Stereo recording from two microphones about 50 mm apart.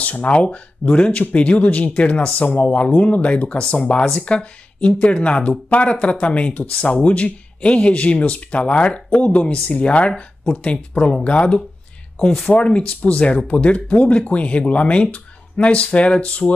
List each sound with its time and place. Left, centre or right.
0.0 s speech: left